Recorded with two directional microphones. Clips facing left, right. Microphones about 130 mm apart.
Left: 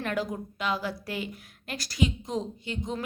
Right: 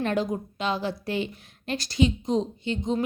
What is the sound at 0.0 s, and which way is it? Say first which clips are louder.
A woman's voice: right 5 dB; 25° right (ahead or behind).